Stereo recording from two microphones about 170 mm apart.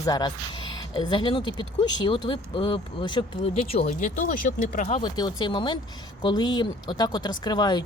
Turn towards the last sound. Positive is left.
turn(degrees=25)  # may be behind; listen again after turning